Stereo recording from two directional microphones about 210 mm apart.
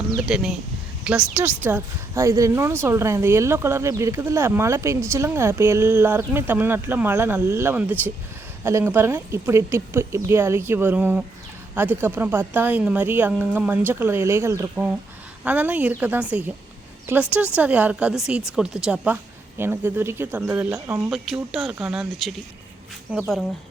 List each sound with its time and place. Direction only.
0.3 s a woman's voice: 5° right (ahead or behind)
21.1 s a woman's voice: centre (ahead or behind)